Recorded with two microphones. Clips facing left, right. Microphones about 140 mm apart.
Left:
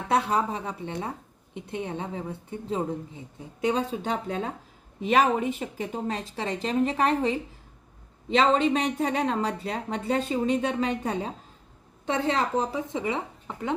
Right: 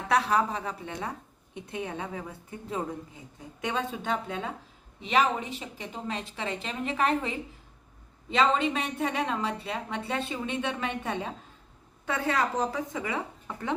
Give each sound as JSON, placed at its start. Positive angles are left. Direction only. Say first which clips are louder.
{"t": 0.1, "sound": "speech", "louder": "left 1 dB", "side_deg": 25}
{"t": 8.4, "sound": "speech", "louder": "left 3 dB", "side_deg": 35}